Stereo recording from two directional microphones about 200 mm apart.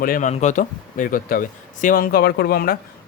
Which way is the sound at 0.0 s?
40° left (ahead or behind).